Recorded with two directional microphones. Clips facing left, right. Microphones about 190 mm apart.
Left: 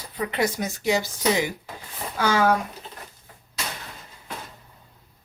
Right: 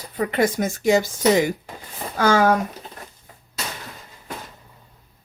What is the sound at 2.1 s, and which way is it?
Speech, 45° right (ahead or behind).